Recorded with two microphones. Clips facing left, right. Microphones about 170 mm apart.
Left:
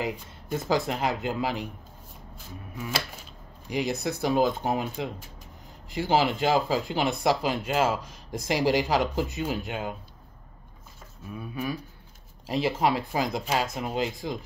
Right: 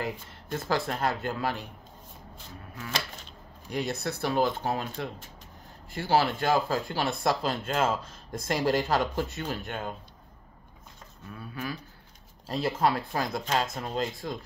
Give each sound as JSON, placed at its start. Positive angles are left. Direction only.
{"t": 0.0, "sound": "speech", "side_deg": 15}
{"t": 2.7, "sound": "speech", "side_deg": 10}
{"t": 11.3, "sound": "speech", "side_deg": 15}